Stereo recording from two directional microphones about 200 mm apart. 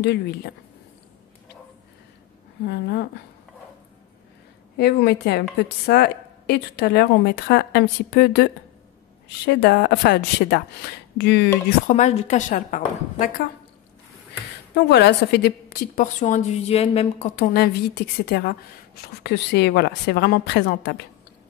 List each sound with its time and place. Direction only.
0.0 s a woman's voice: 55° left (ahead or behind)
2.7 s a woman's voice: 55° left (ahead or behind)
4.7 s a woman's voice: 55° left (ahead or behind)
9.6 s a woman's voice: 55° left (ahead or behind)
11.9 s speech: 35° left (ahead or behind)
14.9 s a woman's voice: 60° left (ahead or behind)
16.0 s speech: 40° left (ahead or behind)
17.4 s a woman's voice: 55° left (ahead or behind)